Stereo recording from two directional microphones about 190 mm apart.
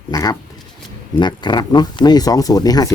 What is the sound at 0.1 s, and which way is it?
Speech, 20° left (ahead or behind).